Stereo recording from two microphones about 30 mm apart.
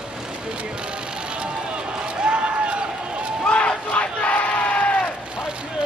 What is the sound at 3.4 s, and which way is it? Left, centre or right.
Battle cry, left.